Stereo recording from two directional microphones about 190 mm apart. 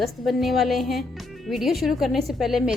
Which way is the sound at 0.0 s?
Centre (ahead or behind).